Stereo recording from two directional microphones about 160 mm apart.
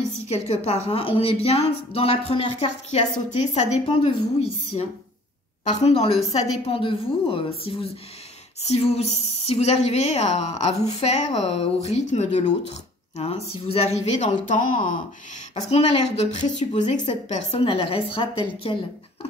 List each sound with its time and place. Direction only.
0.3 s a woman's voice: 40° left (ahead or behind)
15.7 s a woman's voice: 40° left (ahead or behind)